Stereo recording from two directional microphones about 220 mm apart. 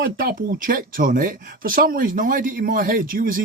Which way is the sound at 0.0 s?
40° right (ahead or behind).